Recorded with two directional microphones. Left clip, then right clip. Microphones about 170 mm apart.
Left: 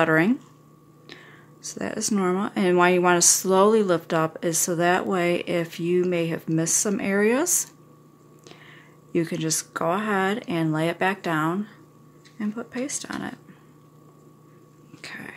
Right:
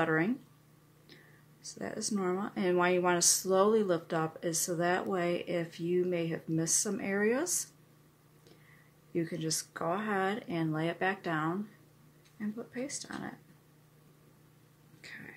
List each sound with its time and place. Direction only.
0.0 s speech: 35° left (ahead or behind)
9.1 s speech: 35° left (ahead or behind)
15.0 s a sound: 35° left (ahead or behind)